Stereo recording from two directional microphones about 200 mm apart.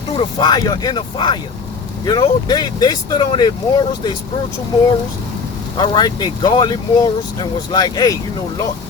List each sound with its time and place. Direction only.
0.1 s speech: 25° left (ahead or behind)
5.7 s speech: 25° left (ahead or behind)